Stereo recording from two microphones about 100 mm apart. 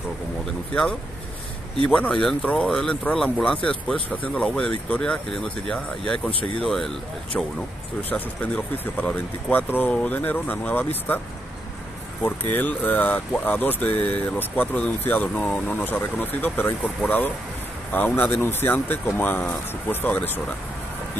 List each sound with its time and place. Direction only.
1.9 s speech: 10° left (ahead or behind)
12.5 s speech: 15° left (ahead or behind)